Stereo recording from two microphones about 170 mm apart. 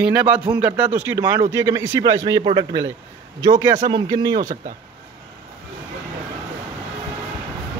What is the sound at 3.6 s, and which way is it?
Speech, 15° right (ahead or behind).